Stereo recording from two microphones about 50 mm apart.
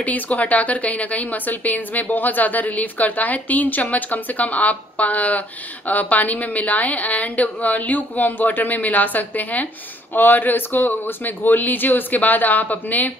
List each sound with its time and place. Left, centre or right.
0.0 s a woman's voice: left